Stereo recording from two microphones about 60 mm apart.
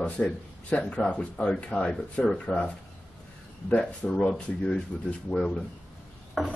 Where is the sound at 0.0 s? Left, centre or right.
Left.